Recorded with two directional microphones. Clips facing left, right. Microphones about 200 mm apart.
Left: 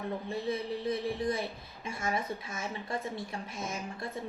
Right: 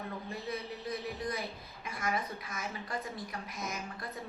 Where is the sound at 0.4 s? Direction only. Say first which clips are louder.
Left 8 dB; 25° left (ahead or behind).